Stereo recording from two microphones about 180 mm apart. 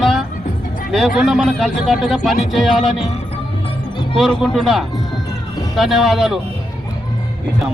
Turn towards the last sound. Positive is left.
turn(degrees=0)  # may be behind; listen again after turning